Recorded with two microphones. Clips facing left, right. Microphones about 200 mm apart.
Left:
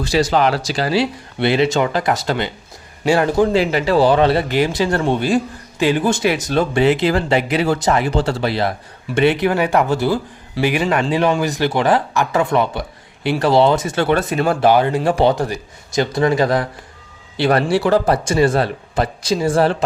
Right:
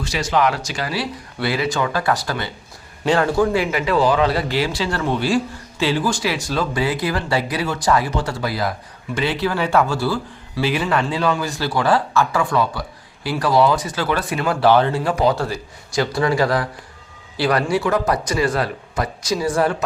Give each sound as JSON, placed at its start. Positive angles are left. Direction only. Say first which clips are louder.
{"t": 0.0, "sound": "speech", "louder": "left 4 dB", "side_deg": 35}
{"t": 14.6, "sound": "speech", "louder": "even", "side_deg": 15}
{"t": 15.0, "sound": "speech", "louder": "left 3 dB", "side_deg": 30}